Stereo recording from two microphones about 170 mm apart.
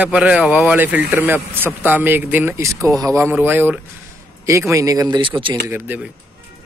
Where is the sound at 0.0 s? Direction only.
5° right (ahead or behind); by 5.6 s 30° right (ahead or behind).